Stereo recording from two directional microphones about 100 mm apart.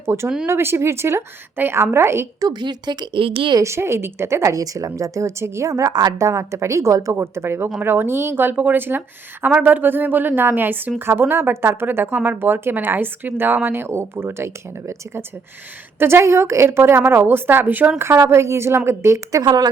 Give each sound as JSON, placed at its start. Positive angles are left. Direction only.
{"t": 0.0, "sound": "a woman's voice", "side_deg": -25}
{"t": 2.4, "sound": "speech", "side_deg": -45}
{"t": 3.2, "sound": "a woman's voice", "side_deg": -65}
{"t": 3.5, "sound": "a woman's voice", "side_deg": -30}
{"t": 19.4, "sound": "speech", "side_deg": -45}